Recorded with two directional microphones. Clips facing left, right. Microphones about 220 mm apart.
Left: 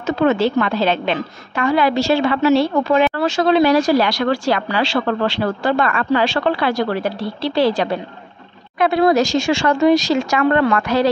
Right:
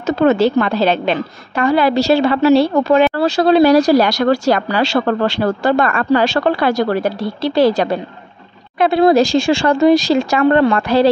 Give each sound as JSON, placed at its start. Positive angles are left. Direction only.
{"t": 0.0, "sound": "a woman's voice", "side_deg": -40}
{"t": 8.7, "sound": "a woman's voice", "side_deg": -30}